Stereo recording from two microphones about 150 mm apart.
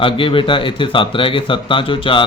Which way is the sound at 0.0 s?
35° left (ahead or behind).